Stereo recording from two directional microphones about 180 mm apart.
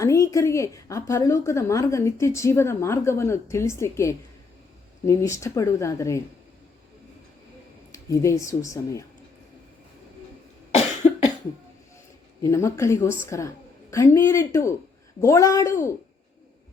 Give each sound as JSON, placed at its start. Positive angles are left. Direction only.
{"t": 0.0, "sound": "a woman's voice", "side_deg": 15}
{"t": 7.9, "sound": "a woman's voice", "side_deg": 15}
{"t": 11.0, "sound": "cough", "side_deg": 40}
{"t": 12.4, "sound": "a woman's voice", "side_deg": 15}